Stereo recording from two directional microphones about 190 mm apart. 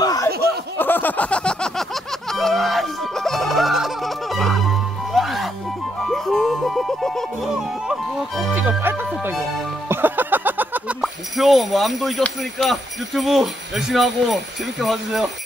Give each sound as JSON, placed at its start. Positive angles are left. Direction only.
{"t": 0.0, "sound": "a sound", "side_deg": 20}
{"t": 2.3, "sound": "music", "side_deg": 0}
{"t": 9.8, "sound": "speech", "side_deg": -10}